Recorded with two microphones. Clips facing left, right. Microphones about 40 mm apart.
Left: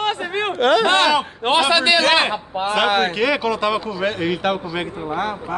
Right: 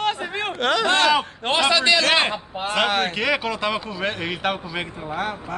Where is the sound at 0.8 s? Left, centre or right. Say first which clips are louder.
Left 2 dB; left.